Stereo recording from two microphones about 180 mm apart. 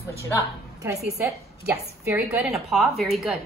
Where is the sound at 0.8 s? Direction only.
20° right (ahead or behind).